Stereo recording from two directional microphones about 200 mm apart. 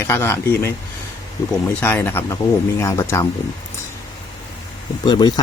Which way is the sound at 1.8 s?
10° left (ahead or behind).